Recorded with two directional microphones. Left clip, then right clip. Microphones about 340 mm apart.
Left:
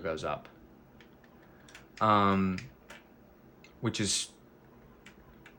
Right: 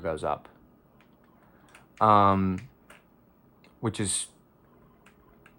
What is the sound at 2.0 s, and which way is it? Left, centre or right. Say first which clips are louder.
Speech: right 6 dB; centre.